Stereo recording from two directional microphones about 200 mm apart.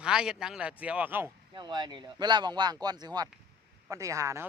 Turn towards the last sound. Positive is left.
turn(degrees=-15)  # may be behind; listen again after turning